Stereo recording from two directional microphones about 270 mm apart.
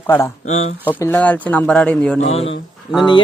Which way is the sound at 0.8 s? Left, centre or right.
Centre.